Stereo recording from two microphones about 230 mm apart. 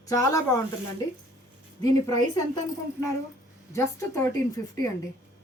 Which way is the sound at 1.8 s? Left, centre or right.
Centre.